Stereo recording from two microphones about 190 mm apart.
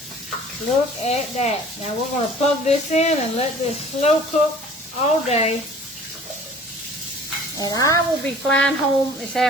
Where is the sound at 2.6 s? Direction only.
35° left (ahead or behind).